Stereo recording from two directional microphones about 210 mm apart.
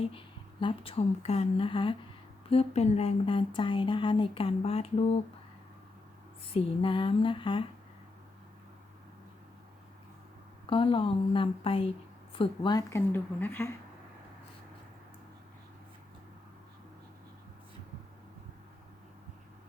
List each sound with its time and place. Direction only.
0.0 s speech: 25° left (ahead or behind)
6.5 s speech: 25° left (ahead or behind)
10.7 s a woman's voice: 25° left (ahead or behind)